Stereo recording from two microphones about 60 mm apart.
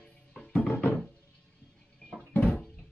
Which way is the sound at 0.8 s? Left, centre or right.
Left.